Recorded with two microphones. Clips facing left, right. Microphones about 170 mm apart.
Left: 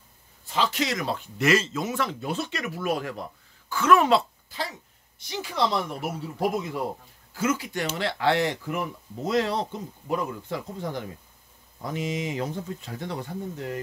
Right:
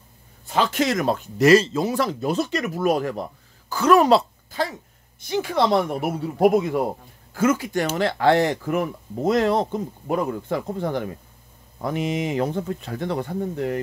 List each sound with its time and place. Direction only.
0.5 s speech: 50° right (ahead or behind)
5.2 s speech: 55° right (ahead or behind)
7.3 s speech: 50° right (ahead or behind)